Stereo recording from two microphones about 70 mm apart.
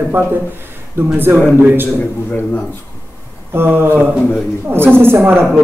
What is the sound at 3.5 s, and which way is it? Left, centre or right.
A man's voice, right.